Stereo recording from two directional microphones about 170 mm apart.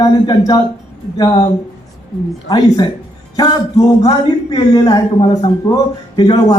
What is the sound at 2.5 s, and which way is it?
A man's voice, 20° left (ahead or behind).